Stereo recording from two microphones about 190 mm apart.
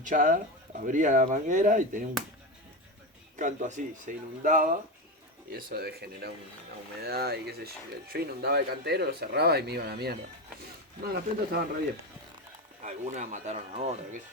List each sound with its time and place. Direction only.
0.0 s speech: 40° right (ahead or behind)
3.3 s speech: 40° right (ahead or behind)
12.8 s speech: 40° right (ahead or behind)